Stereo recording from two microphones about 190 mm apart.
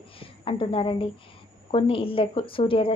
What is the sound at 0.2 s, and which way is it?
A woman's voice, 30° left (ahead or behind).